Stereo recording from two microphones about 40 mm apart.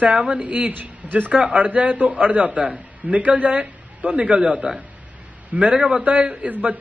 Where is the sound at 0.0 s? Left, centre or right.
Right.